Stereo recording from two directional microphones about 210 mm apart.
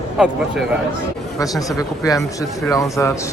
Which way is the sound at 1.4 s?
15° left (ahead or behind).